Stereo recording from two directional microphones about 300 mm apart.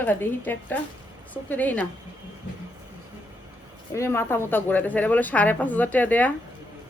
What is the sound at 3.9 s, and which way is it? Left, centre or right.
A woman's voice, centre.